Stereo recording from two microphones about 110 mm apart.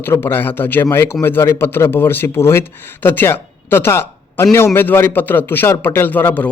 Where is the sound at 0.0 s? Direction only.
20° left (ahead or behind).